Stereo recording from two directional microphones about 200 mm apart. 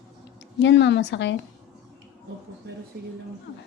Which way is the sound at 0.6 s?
65° left (ahead or behind).